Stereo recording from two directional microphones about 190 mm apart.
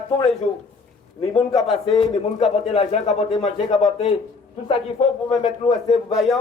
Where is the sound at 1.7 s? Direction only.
30° left (ahead or behind).